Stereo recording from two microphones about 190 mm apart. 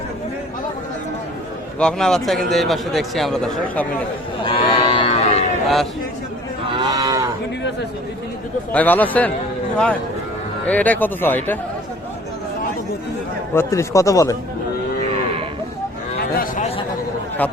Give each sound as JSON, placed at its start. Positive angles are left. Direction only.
{"t": 1.8, "sound": "speech", "side_deg": 5}
{"t": 4.4, "sound": "cattle", "side_deg": 25}
{"t": 5.6, "sound": "a man's voice", "side_deg": 0}
{"t": 6.7, "sound": "cattle", "side_deg": -20}
{"t": 8.7, "sound": "speech", "side_deg": 10}
{"t": 10.7, "sound": "speech", "side_deg": 10}
{"t": 13.5, "sound": "speech", "side_deg": 15}
{"t": 16.1, "sound": "a sound", "side_deg": 50}